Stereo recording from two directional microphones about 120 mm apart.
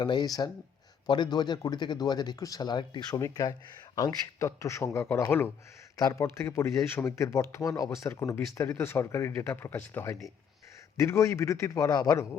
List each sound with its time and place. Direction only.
0.0 s speech: 35° left (ahead or behind)